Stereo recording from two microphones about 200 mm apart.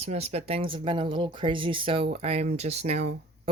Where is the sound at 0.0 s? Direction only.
30° right (ahead or behind).